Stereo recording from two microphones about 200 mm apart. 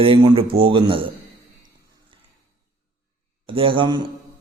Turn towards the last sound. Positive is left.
turn(degrees=-25)  # may be behind; listen again after turning